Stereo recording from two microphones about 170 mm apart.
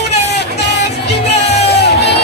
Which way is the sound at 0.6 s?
85° left.